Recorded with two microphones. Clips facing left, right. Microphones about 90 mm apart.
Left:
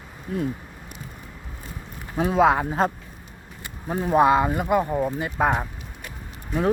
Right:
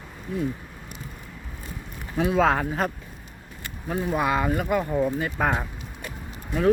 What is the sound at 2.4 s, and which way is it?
Speech, 15° left (ahead or behind).